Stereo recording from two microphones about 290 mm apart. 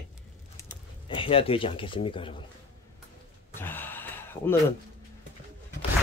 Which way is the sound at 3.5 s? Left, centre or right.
Centre.